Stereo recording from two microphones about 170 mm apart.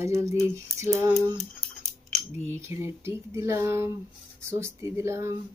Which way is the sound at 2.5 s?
15° right (ahead or behind).